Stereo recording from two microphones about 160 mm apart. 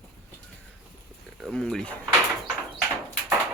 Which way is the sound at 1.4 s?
Centre (ahead or behind).